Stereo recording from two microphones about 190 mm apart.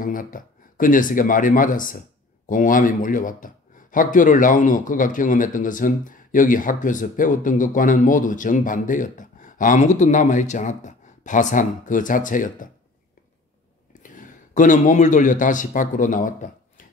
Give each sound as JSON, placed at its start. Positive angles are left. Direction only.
{"t": 0.0, "sound": "speech", "side_deg": 45}
{"t": 14.0, "sound": "a man's voice", "side_deg": 45}